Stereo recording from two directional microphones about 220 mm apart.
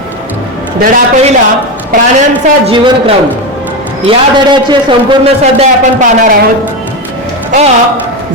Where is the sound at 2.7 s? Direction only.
25° right (ahead or behind).